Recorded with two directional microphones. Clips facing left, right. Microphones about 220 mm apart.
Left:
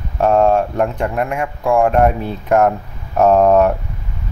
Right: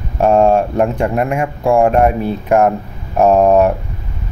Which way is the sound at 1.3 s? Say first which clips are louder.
Right 1 dB; 30° right (ahead or behind).